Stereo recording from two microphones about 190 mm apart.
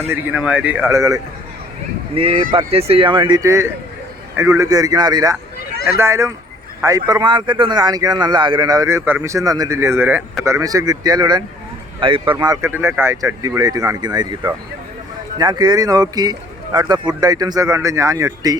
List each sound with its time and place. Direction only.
0.1 s speech: 10° right (ahead or behind)
2.1 s speech: 30° right (ahead or behind)